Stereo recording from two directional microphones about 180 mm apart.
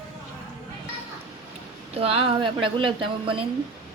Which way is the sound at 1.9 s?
35° right (ahead or behind).